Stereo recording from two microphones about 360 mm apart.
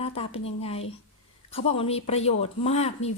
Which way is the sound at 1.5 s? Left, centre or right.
Centre.